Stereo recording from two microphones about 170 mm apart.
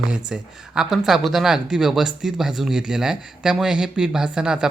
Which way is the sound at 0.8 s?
Centre (ahead or behind).